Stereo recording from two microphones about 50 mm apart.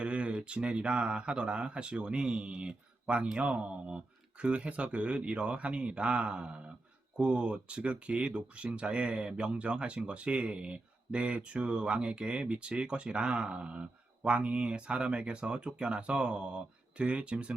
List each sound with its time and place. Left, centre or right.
0.0 s speech: right